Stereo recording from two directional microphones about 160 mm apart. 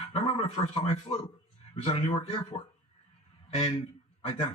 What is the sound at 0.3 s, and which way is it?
A man's voice, 40° left (ahead or behind).